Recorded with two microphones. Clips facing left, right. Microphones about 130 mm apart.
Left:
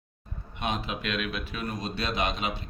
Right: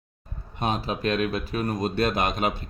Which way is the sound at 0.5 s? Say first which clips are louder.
Right 4 dB; 40° right (ahead or behind).